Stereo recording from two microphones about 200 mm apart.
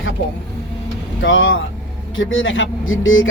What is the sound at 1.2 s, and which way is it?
Speech, 75° left (ahead or behind).